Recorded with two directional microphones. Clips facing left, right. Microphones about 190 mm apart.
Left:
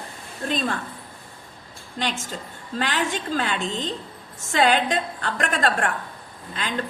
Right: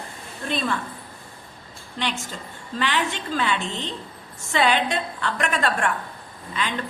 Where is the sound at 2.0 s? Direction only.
45° left (ahead or behind).